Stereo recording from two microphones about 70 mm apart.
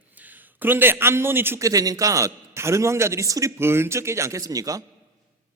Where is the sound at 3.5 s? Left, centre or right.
Right.